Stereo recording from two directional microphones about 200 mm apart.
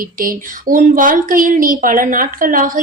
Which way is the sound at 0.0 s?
45° right (ahead or behind).